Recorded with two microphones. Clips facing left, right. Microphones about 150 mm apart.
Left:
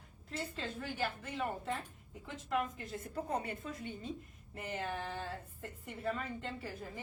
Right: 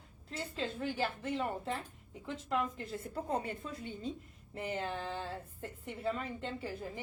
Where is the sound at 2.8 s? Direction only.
30° right (ahead or behind).